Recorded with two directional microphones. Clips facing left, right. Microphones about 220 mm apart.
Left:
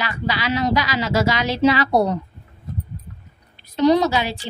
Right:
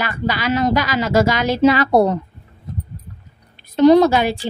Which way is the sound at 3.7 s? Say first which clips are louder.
Right 5 dB; 50° right (ahead or behind).